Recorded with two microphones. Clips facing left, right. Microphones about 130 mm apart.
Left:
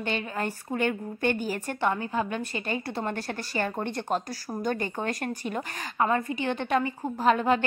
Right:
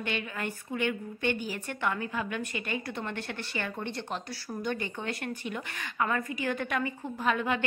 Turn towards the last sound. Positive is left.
turn(degrees=35)  # may be behind; listen again after turning